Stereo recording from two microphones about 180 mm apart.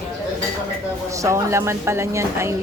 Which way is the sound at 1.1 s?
15° right (ahead or behind).